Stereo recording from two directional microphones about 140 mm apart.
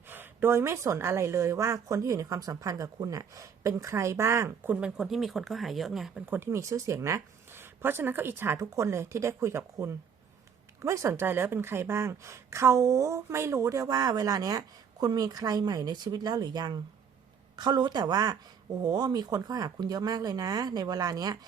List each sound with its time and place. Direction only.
0.1 s a woman's voice: 15° right (ahead or behind)
6.3 s a woman's voice: 20° right (ahead or behind)